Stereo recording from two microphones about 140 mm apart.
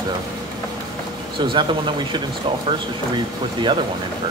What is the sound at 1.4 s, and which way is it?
Speech, 35° right (ahead or behind).